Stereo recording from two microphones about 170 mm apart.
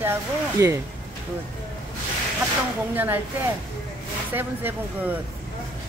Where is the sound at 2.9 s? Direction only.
10° right (ahead or behind).